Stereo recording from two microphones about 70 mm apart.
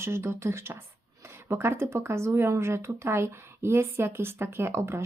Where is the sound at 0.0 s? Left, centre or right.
Right.